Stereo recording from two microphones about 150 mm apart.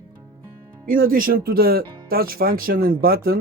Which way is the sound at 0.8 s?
70° right (ahead or behind).